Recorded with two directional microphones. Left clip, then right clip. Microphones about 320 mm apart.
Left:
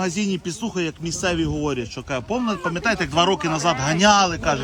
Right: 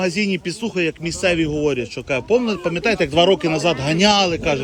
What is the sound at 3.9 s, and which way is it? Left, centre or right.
Speech, left.